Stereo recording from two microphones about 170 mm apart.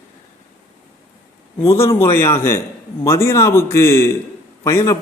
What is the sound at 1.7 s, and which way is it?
A man's voice, 15° left (ahead or behind).